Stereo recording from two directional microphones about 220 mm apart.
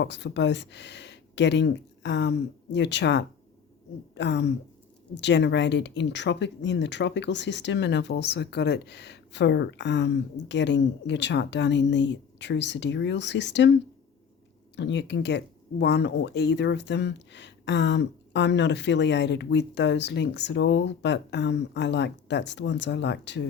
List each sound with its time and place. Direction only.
0.0 s speech: 50° left (ahead or behind)
14.8 s speech: 50° left (ahead or behind)